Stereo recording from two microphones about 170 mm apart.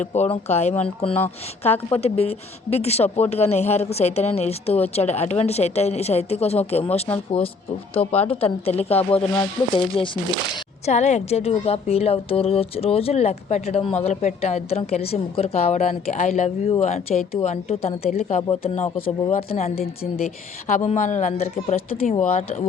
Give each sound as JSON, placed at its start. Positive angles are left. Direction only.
{"t": 0.0, "sound": "a woman's voice", "side_deg": 40}
{"t": 7.3, "sound": "speech", "side_deg": 5}
{"t": 7.9, "sound": "a woman's voice", "side_deg": 35}
{"t": 10.8, "sound": "a woman's voice", "side_deg": 40}